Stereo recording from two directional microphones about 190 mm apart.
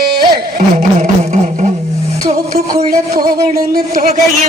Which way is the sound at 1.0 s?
40° right (ahead or behind).